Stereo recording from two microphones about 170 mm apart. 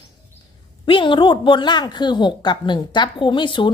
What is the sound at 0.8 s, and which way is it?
A woman's voice, 30° left (ahead or behind).